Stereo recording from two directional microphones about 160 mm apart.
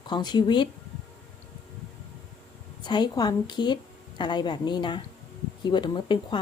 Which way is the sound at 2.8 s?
25° left (ahead or behind).